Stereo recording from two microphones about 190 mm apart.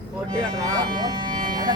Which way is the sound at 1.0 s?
25° right (ahead or behind).